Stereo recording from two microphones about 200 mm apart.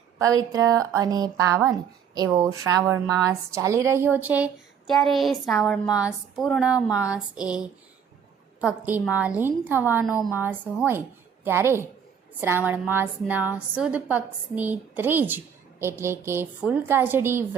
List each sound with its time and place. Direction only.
0.5 s a woman's voice: 15° right (ahead or behind)